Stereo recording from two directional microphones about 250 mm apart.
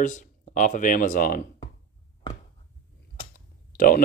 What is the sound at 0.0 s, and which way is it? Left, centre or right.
Speech, left.